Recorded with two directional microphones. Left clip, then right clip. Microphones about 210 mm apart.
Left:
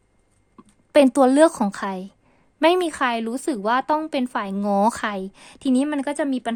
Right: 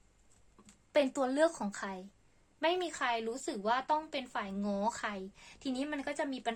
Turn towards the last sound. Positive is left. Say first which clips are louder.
# left 12 dB
turn(degrees=50)  # may be behind; listen again after turning